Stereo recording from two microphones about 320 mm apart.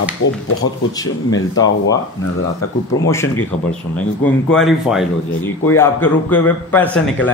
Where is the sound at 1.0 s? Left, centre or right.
Centre.